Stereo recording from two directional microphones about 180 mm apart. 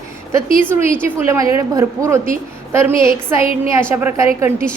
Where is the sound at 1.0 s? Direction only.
15° right (ahead or behind).